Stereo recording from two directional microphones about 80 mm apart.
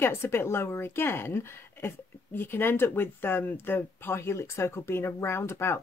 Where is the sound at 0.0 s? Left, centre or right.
Left.